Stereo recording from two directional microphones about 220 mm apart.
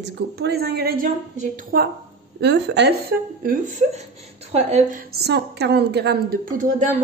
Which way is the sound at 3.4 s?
35° right (ahead or behind).